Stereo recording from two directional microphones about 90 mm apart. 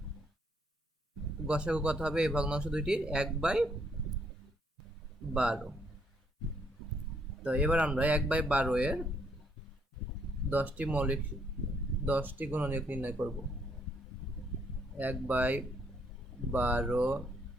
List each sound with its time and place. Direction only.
1.5 s speech: 10° right (ahead or behind)
5.3 s a man's voice: 10° right (ahead or behind)
7.4 s speech: 15° right (ahead or behind)
10.5 s speech: 20° right (ahead or behind)
14.9 s speech: 20° right (ahead or behind)